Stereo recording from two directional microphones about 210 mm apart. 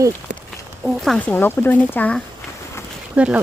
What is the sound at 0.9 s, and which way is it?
Speech, centre (ahead or behind).